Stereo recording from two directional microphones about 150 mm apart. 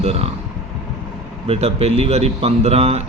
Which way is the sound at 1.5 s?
40° right (ahead or behind).